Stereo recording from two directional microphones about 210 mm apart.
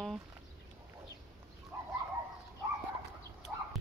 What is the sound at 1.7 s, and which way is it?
Bird, 15° right (ahead or behind).